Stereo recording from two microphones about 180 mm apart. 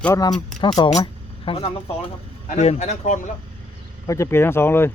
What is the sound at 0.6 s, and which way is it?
Speech, 25° left (ahead or behind).